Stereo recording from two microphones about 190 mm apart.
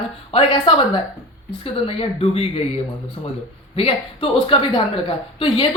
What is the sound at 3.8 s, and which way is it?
A woman's voice, 30° left (ahead or behind).